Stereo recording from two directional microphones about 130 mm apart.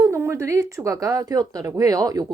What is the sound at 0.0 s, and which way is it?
A woman's voice, 20° right (ahead or behind).